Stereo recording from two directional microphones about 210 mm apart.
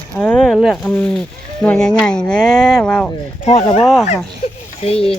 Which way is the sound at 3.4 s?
30° left (ahead or behind).